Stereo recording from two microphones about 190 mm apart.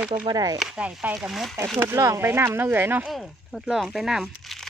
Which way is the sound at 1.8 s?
15° right (ahead or behind).